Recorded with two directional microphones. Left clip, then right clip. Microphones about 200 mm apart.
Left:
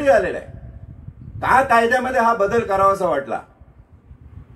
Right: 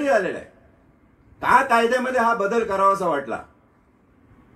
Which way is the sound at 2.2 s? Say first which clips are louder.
Left 3 dB; 50° left (ahead or behind).